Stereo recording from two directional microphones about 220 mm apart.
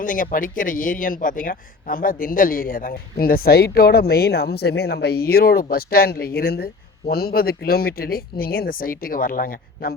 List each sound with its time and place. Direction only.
0.0 s speech: 40° left (ahead or behind)